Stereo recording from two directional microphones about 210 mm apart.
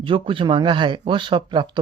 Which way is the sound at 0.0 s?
25° right (ahead or behind).